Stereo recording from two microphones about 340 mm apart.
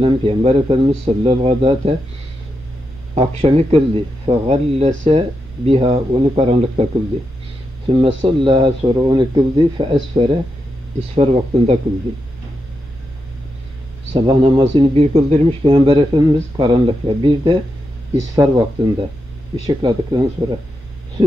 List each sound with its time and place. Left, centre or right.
0.0 s a man's voice: centre
3.2 s a man's voice: centre
14.1 s a man's voice: centre